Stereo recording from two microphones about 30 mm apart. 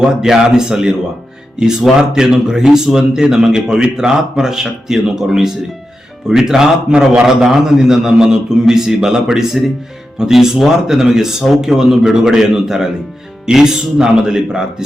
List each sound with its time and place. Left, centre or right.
0.0 s a man's voice: centre
6.9 s a man's voice: right
7.3 s a man's voice: centre